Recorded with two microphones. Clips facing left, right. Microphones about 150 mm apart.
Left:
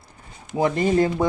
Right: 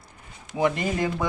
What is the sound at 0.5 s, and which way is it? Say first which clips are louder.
Speech: left 5 dB; 35° left (ahead or behind).